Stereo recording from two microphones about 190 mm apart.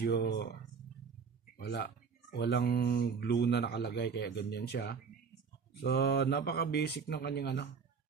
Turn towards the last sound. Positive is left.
turn(degrees=60)  # may be behind; listen again after turning